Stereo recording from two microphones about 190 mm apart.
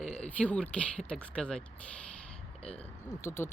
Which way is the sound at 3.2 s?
10° left (ahead or behind).